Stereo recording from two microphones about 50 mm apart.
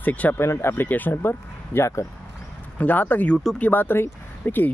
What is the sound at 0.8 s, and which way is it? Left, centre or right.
Speech, left.